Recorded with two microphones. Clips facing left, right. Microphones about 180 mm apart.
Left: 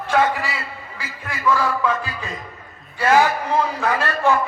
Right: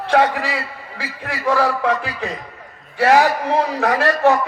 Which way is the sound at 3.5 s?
70° right (ahead or behind).